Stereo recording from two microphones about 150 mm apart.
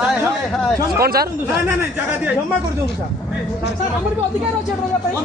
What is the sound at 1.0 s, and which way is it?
Speech, 90° right.